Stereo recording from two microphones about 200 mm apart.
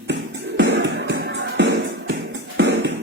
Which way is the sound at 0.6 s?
65° right (ahead or behind).